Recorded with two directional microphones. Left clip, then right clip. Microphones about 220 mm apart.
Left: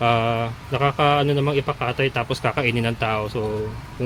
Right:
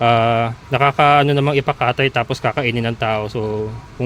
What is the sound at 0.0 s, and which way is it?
A man's voice, 25° right (ahead or behind).